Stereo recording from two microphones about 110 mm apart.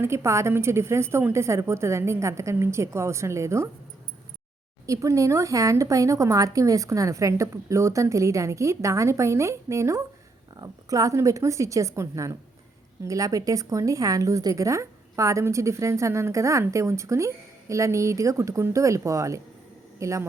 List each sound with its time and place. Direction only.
0.0 s a woman's voice: 25° right (ahead or behind)
4.9 s a woman's voice: 30° right (ahead or behind)